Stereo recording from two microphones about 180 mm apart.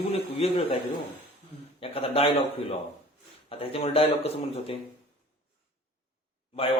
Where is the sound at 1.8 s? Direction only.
30° left (ahead or behind).